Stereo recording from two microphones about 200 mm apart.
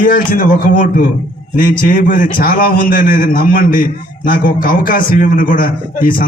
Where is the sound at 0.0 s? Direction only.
45° left (ahead or behind).